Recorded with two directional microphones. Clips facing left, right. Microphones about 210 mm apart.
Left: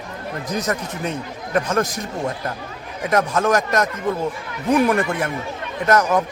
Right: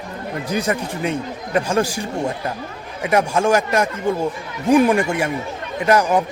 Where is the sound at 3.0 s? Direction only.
10° right (ahead or behind).